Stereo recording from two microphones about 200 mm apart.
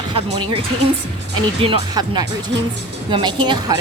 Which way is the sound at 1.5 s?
25° right (ahead or behind).